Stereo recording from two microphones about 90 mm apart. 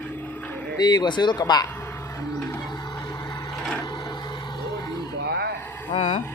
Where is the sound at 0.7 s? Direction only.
50° left (ahead or behind).